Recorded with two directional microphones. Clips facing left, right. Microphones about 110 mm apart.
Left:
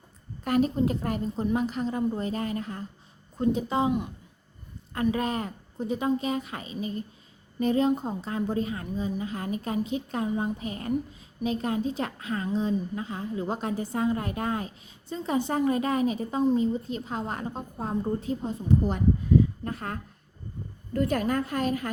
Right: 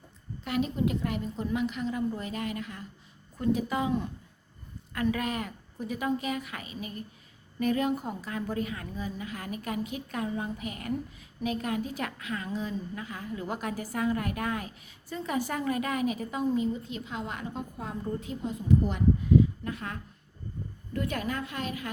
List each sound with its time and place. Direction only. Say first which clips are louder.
0.4 s a woman's voice: left 5 dB; 45° left (ahead or behind); by 3.9 s 25° left (ahead or behind)
5.1 s a woman's voice: left 3 dB; 30° left (ahead or behind)